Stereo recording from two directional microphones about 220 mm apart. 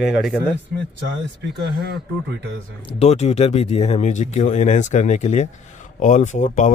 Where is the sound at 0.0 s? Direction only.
5° right (ahead or behind).